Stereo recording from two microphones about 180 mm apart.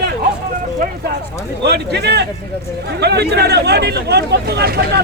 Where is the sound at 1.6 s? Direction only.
65° right (ahead or behind).